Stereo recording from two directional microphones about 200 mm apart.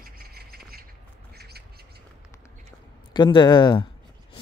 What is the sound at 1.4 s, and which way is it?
Bird, 50° right (ahead or behind).